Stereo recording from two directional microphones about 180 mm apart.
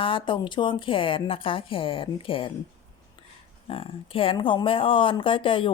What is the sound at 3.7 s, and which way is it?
Speech, 30° left (ahead or behind).